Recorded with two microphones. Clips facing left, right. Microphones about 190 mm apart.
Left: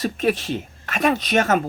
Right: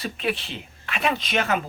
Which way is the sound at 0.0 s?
45° left (ahead or behind).